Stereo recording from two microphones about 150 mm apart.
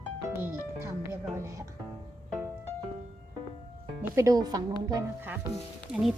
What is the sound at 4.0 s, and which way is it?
Speech, 20° right (ahead or behind).